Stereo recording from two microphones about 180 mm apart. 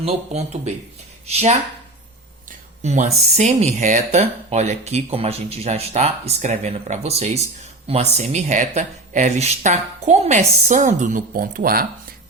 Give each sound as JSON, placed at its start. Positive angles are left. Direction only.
{"t": 0.0, "sound": "speech", "side_deg": -35}
{"t": 2.8, "sound": "speech", "side_deg": -40}